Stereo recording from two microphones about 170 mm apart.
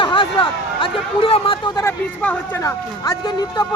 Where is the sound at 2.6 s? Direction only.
20° left (ahead or behind).